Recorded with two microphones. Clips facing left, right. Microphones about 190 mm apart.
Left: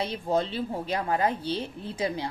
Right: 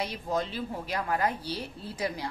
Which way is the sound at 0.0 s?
30° left (ahead or behind).